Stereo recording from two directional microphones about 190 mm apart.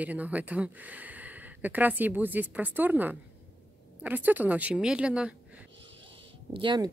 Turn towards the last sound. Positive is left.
turn(degrees=-25)  # may be behind; listen again after turning